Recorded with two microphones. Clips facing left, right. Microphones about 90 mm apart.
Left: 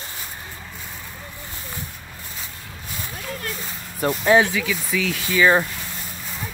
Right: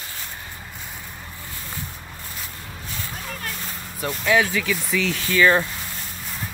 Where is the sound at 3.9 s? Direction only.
35° left (ahead or behind).